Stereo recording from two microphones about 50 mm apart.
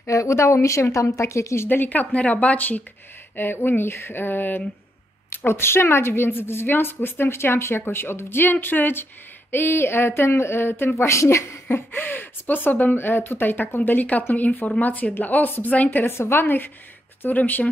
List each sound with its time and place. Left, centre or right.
0.0 s a woman's voice: left
1.7 s speech: left
3.3 s a woman's voice: left
11.7 s a woman's voice: left
13.9 s speech: left
16.0 s a woman's voice: left